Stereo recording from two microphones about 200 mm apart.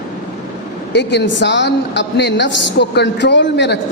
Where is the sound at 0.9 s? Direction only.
60° left (ahead or behind).